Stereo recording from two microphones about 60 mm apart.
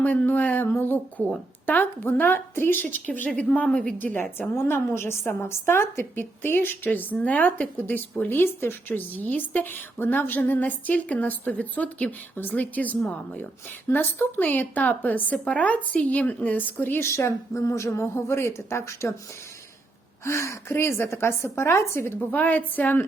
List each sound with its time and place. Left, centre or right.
0.0 s a woman's voice: left
3.1 s a woman's voice: left
17.0 s a woman's voice: left
20.2 s a woman's voice: left
22.3 s a woman's voice: left